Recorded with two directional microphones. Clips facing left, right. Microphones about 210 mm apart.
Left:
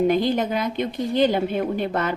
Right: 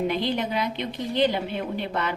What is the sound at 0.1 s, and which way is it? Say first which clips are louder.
Speech: left 5 dB; 45° left (ahead or behind).